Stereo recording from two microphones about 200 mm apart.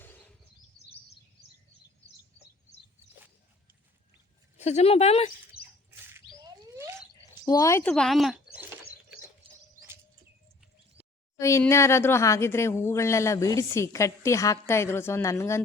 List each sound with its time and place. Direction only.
0.0 s a sound: 10° left (ahead or behind)
4.5 s speech: 35° left (ahead or behind)
6.1 s rodents: 15° right (ahead or behind)
7.4 s speech: 15° left (ahead or behind); by 8.6 s centre (ahead or behind)
9.5 s chirp: 25° right (ahead or behind)
11.3 s speech: 15° left (ahead or behind)